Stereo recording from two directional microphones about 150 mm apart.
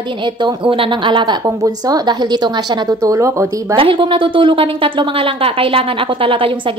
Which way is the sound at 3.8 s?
35° right (ahead or behind).